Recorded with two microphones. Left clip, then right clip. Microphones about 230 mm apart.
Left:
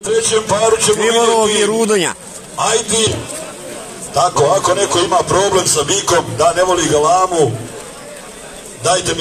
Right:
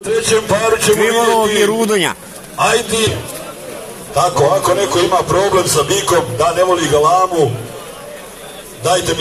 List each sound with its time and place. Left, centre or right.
0.0 s speech: left
0.9 s a man's voice: centre
2.5 s a man's voice: left
4.1 s a man's voice: left
8.8 s a man's voice: left